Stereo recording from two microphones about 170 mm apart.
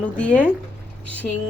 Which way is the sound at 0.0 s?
10° left (ahead or behind).